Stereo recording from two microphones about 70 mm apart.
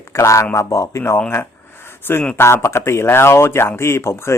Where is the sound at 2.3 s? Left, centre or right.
Left.